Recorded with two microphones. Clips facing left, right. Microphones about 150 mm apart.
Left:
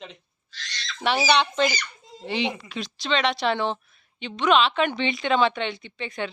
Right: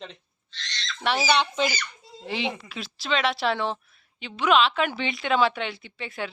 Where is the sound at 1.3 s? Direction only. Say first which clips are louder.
Left 3 dB; 5° right (ahead or behind).